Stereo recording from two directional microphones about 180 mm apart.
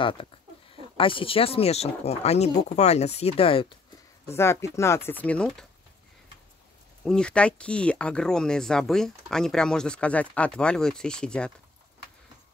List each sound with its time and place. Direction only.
0.9 s speech: 30° left (ahead or behind)
4.4 s speech: 15° left (ahead or behind)
7.1 s speech: 5° left (ahead or behind)